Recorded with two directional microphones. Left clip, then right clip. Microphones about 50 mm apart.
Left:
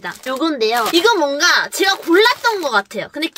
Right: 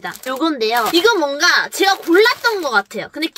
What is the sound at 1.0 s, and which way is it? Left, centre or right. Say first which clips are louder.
Speech: left 1 dB; left.